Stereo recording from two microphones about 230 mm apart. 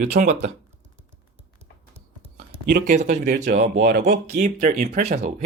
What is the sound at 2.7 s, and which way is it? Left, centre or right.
Speech, right.